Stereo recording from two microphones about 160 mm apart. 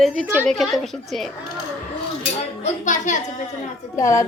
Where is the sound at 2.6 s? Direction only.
50° left (ahead or behind).